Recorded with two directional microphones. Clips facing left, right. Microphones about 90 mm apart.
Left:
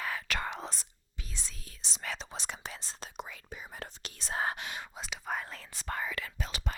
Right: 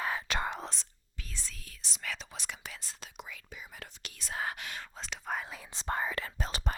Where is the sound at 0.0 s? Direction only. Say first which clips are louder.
Right 2 dB; 25° right (ahead or behind).